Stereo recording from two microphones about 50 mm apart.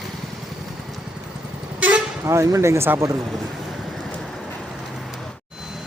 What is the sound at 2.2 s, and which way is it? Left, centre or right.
Speech, right.